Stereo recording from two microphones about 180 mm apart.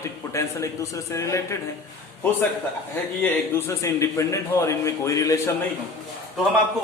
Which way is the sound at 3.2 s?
15° left (ahead or behind).